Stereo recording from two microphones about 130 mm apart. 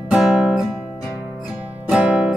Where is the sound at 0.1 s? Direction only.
5° right (ahead or behind).